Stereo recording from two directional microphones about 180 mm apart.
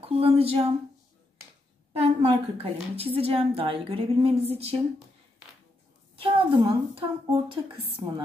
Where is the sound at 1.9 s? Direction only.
35° right (ahead or behind).